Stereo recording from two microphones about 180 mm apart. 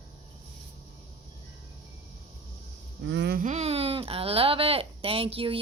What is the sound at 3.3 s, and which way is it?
Speech, 40° right (ahead or behind).